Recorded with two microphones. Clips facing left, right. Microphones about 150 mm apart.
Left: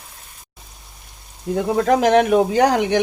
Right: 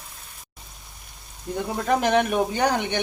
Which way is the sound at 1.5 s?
85° left.